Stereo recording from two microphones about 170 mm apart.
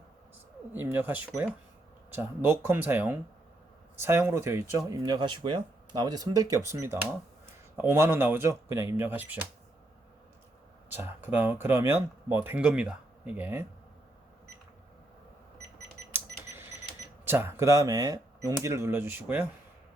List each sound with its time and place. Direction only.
0.7 s speech: 10° right (ahead or behind)
10.9 s speech: 10° right (ahead or behind)
17.2 s speech: 10° right (ahead or behind)